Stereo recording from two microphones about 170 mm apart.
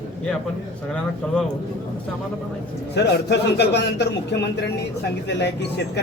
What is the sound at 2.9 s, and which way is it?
Speech, 80° left.